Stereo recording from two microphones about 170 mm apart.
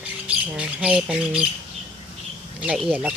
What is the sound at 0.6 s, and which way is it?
Speech, 5° right (ahead or behind).